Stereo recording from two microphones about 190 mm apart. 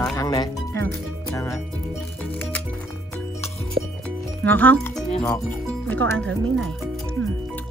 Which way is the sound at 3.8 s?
80° right.